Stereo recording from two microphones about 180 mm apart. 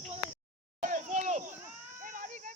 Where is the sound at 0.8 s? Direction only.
45° right (ahead or behind).